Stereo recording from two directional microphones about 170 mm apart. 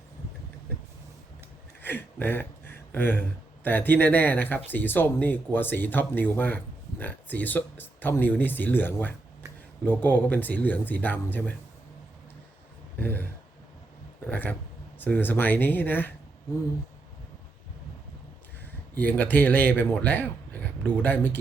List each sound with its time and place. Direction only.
1.8 s speech: 10° left (ahead or behind)
13.0 s speech: 10° left (ahead or behind)
14.3 s speech: 10° left (ahead or behind)
18.9 s speech: 10° left (ahead or behind)